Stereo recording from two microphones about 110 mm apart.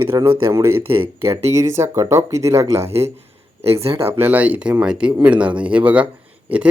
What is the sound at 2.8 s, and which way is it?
Speech, 70° right (ahead or behind).